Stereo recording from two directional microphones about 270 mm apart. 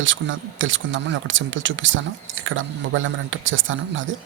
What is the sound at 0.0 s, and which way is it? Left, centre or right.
Speech, right.